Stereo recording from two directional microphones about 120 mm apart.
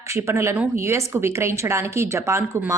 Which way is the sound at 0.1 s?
25° right (ahead or behind).